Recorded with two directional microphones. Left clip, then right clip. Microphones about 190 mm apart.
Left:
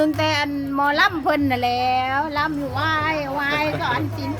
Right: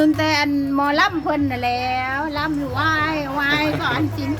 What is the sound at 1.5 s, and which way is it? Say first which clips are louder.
Speech: left 1 dB; 35° left (ahead or behind).